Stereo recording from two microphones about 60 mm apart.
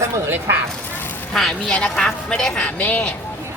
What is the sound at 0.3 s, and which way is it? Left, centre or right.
Speech, right.